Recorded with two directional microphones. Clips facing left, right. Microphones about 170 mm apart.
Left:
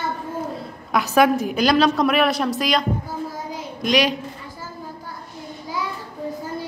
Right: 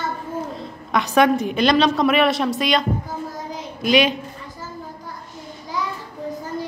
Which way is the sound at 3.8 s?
Centre (ahead or behind).